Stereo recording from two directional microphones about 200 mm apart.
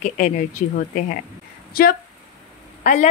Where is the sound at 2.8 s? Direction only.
40° left (ahead or behind).